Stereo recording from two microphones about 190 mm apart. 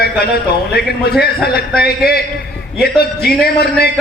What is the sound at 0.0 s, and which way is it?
A man's voice, 55° left (ahead or behind).